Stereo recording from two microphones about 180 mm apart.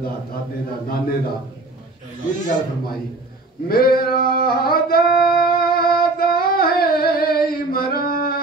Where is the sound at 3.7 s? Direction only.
55° left (ahead or behind).